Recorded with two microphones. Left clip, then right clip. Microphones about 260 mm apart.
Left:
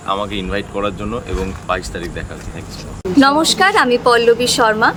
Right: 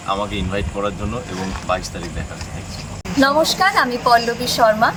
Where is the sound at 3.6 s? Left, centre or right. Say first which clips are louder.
Left 7 dB; left.